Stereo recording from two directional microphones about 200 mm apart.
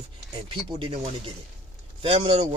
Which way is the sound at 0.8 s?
25° right (ahead or behind).